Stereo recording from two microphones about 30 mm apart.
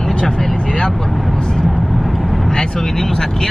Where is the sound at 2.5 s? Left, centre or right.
Centre.